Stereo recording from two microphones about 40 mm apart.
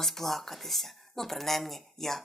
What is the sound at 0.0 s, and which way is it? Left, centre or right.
Speech, centre.